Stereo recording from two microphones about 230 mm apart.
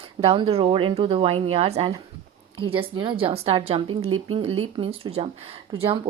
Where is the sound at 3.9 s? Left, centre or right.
Right.